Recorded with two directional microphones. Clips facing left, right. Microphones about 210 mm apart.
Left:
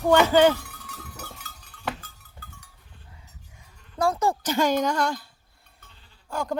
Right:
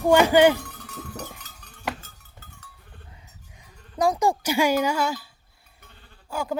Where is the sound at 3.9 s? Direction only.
15° right (ahead or behind).